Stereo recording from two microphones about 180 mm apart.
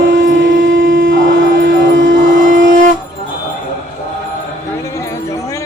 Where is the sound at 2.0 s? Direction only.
90° right.